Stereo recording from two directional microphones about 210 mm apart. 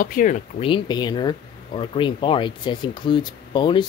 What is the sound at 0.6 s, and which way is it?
Speech, 25° left (ahead or behind).